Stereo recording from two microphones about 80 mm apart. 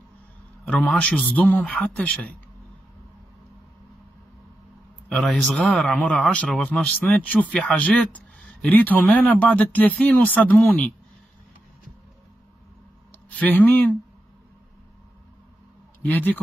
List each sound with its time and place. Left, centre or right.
0.7 s a man's voice: centre
5.1 s speech: centre
6.6 s a man's voice: centre
13.3 s speech: centre
16.0 s speech: left